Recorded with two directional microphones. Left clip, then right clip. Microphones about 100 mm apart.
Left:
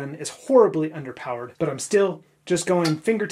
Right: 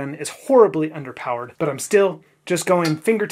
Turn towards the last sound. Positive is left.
turn(degrees=-35)  # may be behind; listen again after turning